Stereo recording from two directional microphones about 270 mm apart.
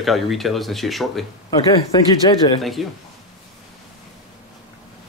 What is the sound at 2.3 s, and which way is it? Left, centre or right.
Speech, centre.